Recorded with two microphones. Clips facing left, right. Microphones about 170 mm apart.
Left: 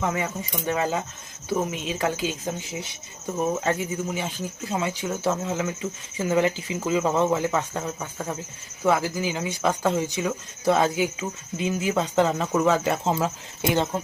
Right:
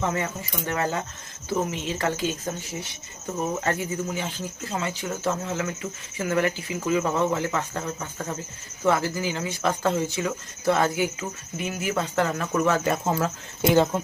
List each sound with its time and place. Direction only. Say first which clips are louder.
0.0 s speech: even; 10° left (ahead or behind)
3.6 s speech: left 1 dB; 15° left (ahead or behind)
13.6 s speech: right 4 dB; centre (ahead or behind)